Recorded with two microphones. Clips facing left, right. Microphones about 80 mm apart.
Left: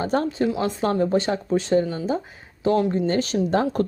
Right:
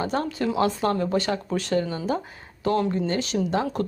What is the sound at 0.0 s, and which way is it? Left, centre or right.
Speech, left.